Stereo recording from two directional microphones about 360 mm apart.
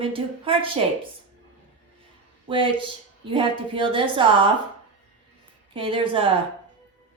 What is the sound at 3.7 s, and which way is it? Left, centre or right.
Speech, centre.